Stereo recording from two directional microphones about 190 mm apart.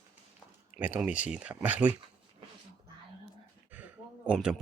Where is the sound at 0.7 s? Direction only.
5° right (ahead or behind).